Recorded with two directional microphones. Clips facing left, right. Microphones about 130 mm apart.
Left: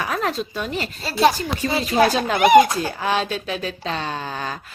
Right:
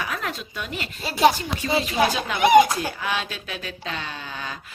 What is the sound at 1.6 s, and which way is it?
Speech, 40° left (ahead or behind).